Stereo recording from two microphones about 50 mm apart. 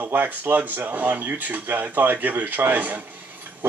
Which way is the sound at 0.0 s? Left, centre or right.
Right.